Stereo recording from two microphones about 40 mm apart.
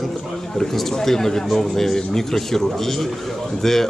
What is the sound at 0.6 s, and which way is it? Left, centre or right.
Speech, centre.